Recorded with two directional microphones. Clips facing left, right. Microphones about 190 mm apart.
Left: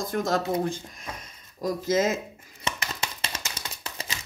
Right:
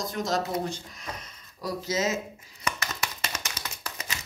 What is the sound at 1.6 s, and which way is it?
Speech, 50° left (ahead or behind).